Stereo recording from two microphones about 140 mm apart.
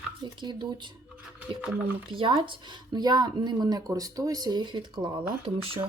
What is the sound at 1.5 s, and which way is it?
Speech, 35° right (ahead or behind).